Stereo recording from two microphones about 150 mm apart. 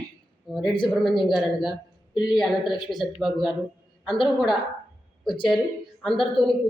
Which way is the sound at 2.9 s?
Centre (ahead or behind).